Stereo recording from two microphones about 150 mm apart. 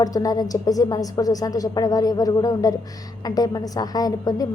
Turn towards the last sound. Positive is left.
turn(degrees=25)  # may be behind; listen again after turning